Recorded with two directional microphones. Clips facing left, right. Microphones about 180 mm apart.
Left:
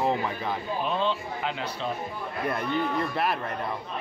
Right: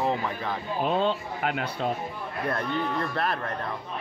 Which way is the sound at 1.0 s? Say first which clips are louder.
Right 2 dB; 50° right (ahead or behind).